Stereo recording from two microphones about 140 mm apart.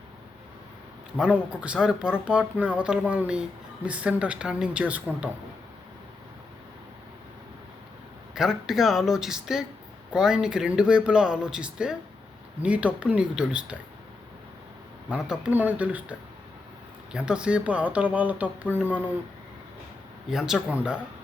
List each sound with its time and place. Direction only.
1.1 s speech: 5° right (ahead or behind)
8.4 s speech: 5° right (ahead or behind)
15.1 s speech: 10° right (ahead or behind)
20.3 s speech: 5° right (ahead or behind)